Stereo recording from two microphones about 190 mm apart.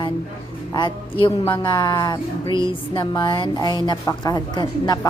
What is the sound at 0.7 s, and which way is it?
A woman's voice, 25° left (ahead or behind).